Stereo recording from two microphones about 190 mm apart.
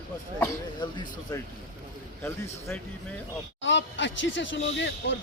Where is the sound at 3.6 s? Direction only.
70° left (ahead or behind).